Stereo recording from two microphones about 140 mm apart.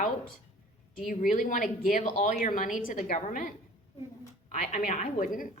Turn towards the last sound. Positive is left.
turn(degrees=80)